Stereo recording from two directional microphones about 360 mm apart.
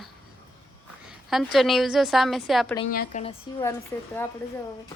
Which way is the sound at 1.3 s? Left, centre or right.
Centre.